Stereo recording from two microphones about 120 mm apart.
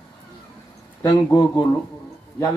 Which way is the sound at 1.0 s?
25° left (ahead or behind).